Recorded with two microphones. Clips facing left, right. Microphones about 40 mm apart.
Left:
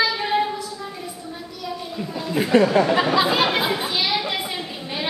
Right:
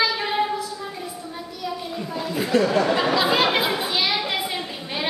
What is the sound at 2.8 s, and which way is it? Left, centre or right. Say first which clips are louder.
Speech: left 2 dB; centre.